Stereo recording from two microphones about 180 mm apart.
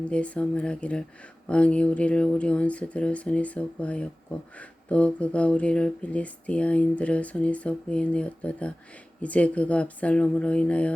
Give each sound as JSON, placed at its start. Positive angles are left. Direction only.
{"t": 0.0, "sound": "speech", "side_deg": 5}